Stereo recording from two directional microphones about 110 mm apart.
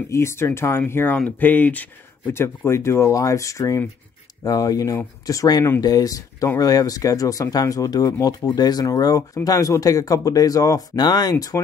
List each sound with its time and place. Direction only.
0.1 s speech: 25° left (ahead or behind)